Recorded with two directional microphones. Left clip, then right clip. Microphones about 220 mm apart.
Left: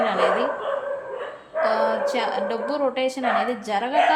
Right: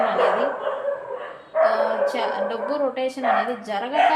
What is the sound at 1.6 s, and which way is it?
Speech, 30° left (ahead or behind).